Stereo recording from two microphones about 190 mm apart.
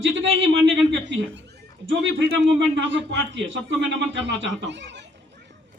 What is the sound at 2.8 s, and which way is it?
Speech, 70° right (ahead or behind).